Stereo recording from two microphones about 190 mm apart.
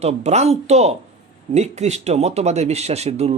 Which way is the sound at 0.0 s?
35° right (ahead or behind).